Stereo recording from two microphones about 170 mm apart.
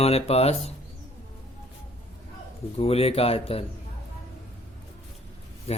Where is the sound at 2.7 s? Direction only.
35° left (ahead or behind).